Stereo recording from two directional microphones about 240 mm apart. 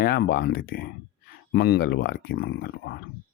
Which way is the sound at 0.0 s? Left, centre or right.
Left.